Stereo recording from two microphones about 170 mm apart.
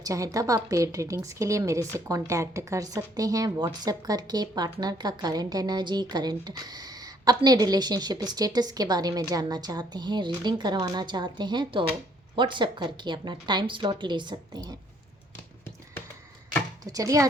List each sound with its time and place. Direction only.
0.0 s a woman's voice: 20° right (ahead or behind)
16.8 s a woman's voice: 20° right (ahead or behind)